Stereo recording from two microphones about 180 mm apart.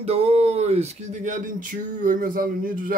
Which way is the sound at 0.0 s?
35° right (ahead or behind).